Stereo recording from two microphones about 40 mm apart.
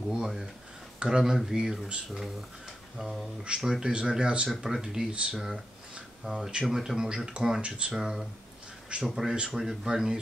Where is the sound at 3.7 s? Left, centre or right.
Right.